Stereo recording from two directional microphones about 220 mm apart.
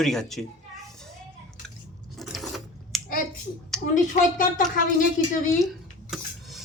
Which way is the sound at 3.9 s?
35° left (ahead or behind).